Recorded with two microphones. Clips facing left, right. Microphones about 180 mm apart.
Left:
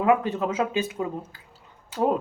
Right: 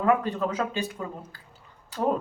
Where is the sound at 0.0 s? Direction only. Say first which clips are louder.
Left 2 dB; 20° left (ahead or behind).